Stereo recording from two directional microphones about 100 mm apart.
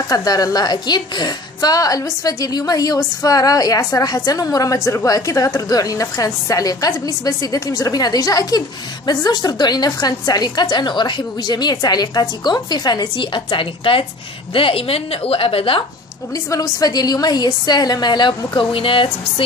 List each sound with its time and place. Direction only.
0.1 s a woman's voice: 40° left (ahead or behind); by 15.8 s 65° left (ahead or behind)
16.4 s a woman's voice: 35° left (ahead or behind); by 19.4 s 60° left (ahead or behind)